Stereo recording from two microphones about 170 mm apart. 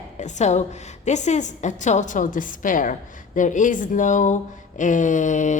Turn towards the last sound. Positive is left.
turn(degrees=45)  # may be behind; listen again after turning